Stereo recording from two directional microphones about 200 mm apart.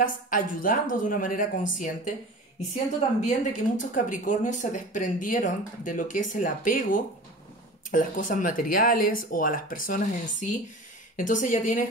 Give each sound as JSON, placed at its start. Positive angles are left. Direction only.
{"t": 0.0, "sound": "speech", "side_deg": 40}
{"t": 3.3, "sound": "speech", "side_deg": 40}